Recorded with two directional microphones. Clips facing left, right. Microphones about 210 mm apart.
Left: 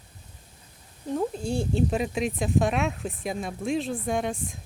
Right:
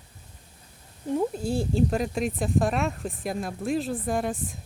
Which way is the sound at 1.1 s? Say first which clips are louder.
Right 1 dB; 5° right (ahead or behind).